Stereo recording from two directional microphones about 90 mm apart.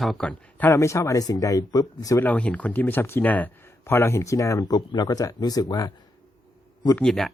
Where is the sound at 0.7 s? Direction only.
35° left (ahead or behind).